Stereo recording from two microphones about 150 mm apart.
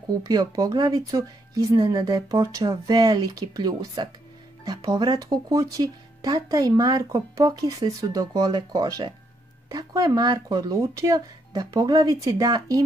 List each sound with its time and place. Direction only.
0.2 s speech: 25° right (ahead or behind)